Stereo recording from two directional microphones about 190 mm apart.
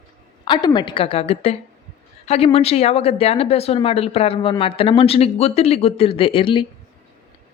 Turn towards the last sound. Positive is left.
turn(degrees=25)  # may be behind; listen again after turning